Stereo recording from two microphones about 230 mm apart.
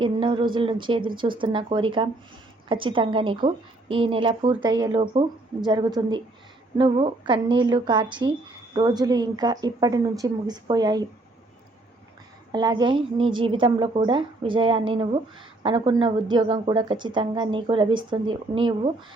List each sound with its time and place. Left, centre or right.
0.0 s a woman's voice: right
12.5 s a woman's voice: centre